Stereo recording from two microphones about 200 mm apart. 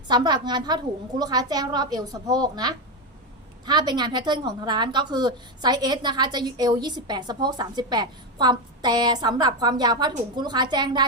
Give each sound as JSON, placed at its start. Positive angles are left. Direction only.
{"t": 0.1, "sound": "a woman's voice", "side_deg": -20}